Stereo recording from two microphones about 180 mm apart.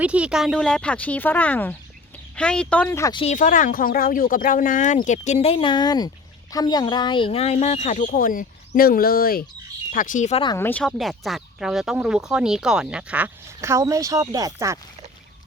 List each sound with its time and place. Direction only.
0.0 s speech: 5° right (ahead or behind); by 3.2 s 15° left (ahead or behind)
3.2 s speech: 40° left (ahead or behind)
10.6 s speech: 10° left (ahead or behind); by 14.8 s 20° right (ahead or behind)